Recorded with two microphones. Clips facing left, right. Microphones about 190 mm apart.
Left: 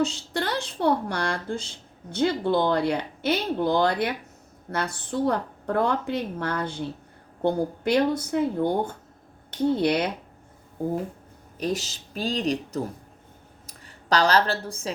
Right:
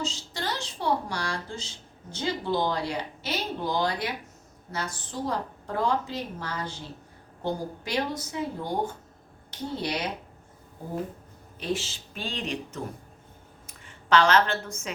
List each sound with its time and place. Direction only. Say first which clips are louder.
0.0 s a woman's voice: left 7 dB; 60° left (ahead or behind)
11.6 s a woman's voice: left 3 dB; 40° left (ahead or behind)